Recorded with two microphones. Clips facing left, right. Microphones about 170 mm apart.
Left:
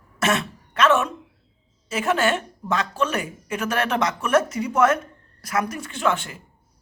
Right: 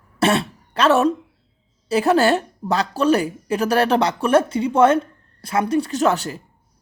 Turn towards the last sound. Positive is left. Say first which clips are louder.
# right 5 dB
turn(degrees=-40)  # may be behind; listen again after turning